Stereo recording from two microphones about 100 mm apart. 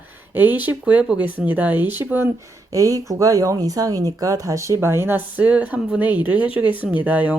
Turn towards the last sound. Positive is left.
turn(degrees=-15)  # may be behind; listen again after turning